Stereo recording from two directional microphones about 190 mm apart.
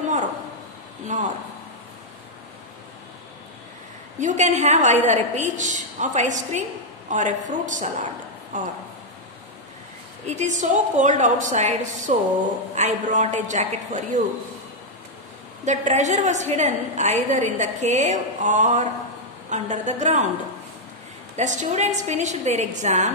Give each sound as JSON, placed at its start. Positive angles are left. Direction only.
{"t": 4.2, "sound": "a woman's voice", "side_deg": -40}
{"t": 10.2, "sound": "a woman's voice", "side_deg": -40}
{"t": 15.6, "sound": "a woman's voice", "side_deg": -40}
{"t": 21.4, "sound": "a woman's voice", "side_deg": -40}